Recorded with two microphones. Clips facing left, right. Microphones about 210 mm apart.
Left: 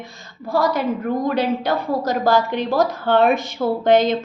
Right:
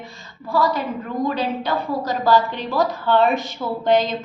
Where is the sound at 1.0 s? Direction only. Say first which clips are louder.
Left 2 dB; 50° left (ahead or behind).